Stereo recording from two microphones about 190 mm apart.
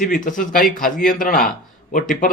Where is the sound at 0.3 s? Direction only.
45° left (ahead or behind).